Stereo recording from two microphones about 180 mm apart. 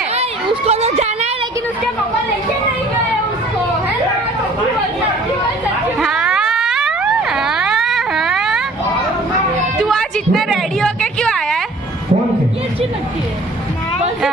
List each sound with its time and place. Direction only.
0.2 s children playing: 35° right (ahead or behind)
6.0 s boing: 5° right (ahead or behind)
9.8 s a sound: centre (ahead or behind)